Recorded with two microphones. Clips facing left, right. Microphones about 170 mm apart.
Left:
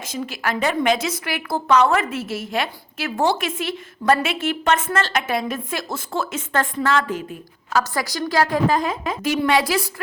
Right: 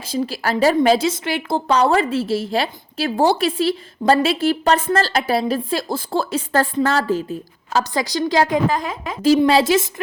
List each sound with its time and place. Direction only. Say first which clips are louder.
0.0 s a woman's voice: right 4 dB; 30° right (ahead or behind)
9.2 s a woman's voice: right 6 dB; 30° right (ahead or behind)